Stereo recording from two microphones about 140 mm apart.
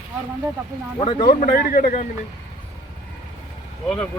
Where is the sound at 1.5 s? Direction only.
90° left; by 2.0 s 65° left (ahead or behind).